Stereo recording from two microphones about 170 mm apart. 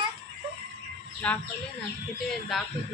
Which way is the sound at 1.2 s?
10° left (ahead or behind).